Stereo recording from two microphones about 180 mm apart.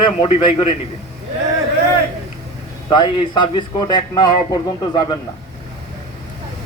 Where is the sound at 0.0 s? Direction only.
30° left (ahead or behind).